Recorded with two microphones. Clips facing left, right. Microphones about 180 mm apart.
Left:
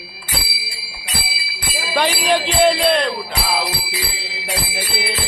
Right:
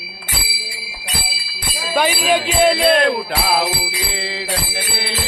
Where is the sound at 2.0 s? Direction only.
5° right (ahead or behind).